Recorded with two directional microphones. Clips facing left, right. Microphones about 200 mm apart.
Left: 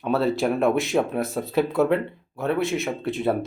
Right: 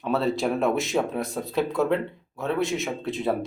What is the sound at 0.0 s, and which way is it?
Speech, centre (ahead or behind).